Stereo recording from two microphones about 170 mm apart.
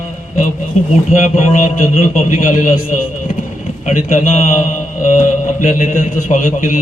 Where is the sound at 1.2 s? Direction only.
45° left (ahead or behind).